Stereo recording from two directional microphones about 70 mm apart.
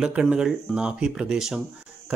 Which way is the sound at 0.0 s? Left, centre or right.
Centre.